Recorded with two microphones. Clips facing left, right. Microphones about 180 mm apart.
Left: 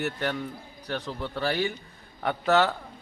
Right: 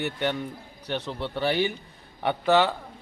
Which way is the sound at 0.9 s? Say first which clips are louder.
Right 2 dB; 20° right (ahead or behind).